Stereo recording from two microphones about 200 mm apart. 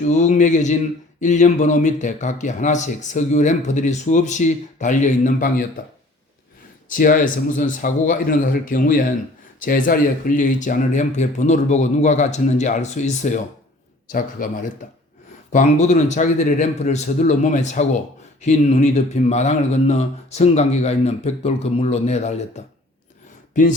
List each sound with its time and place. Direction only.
0.0 s speech: 35° left (ahead or behind)
6.8 s a man's voice: 40° left (ahead or behind)